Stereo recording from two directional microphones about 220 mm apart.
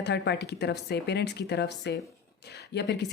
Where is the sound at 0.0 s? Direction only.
50° left (ahead or behind).